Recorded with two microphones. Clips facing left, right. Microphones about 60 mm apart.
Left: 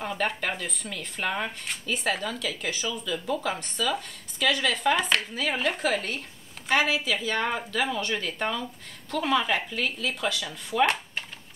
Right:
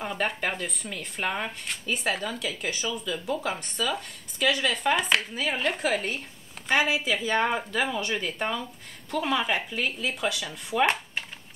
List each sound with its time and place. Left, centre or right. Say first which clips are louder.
0.0 s speech: even; centre
6.7 s a woman's voice: even; right
7.8 s speech: even; centre